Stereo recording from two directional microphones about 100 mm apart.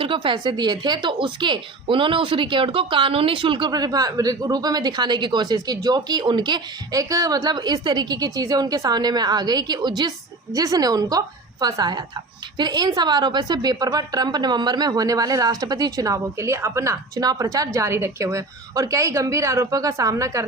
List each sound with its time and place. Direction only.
0.0 s speech: 60° right (ahead or behind)
3.7 s a woman's voice: 40° right (ahead or behind)